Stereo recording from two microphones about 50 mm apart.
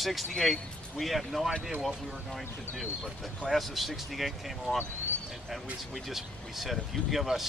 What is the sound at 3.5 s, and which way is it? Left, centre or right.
A man's voice, centre.